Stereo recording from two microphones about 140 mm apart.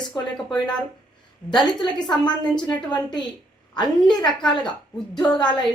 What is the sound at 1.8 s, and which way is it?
A woman's voice, 30° left (ahead or behind).